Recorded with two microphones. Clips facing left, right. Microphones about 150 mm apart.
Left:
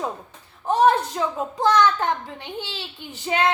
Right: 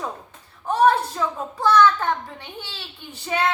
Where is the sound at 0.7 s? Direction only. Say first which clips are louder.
Even; 15° left (ahead or behind).